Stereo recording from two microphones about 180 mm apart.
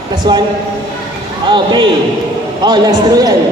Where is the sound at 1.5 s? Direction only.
25° right (ahead or behind).